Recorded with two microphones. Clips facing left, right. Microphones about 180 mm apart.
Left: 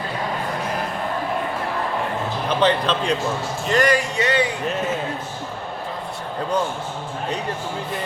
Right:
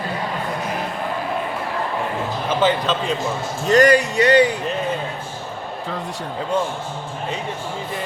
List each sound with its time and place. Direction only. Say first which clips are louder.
2.5 s speech: even; centre (ahead or behind)
3.7 s speech: right 5 dB; 40° right (ahead or behind)